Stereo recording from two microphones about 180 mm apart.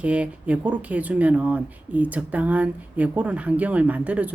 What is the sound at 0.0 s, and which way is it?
Speech, 5° right (ahead or behind).